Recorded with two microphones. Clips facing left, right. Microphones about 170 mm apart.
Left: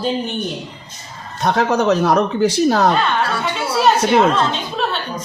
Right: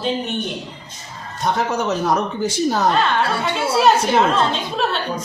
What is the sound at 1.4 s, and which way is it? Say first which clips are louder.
A man's voice: left 5 dB; 70° left (ahead or behind).